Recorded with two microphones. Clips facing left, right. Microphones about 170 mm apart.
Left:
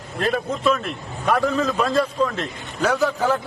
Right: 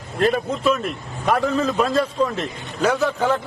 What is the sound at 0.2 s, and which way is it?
A man's voice, centre (ahead or behind).